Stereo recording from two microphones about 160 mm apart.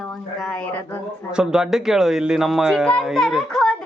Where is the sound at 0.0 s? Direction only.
5° left (ahead or behind).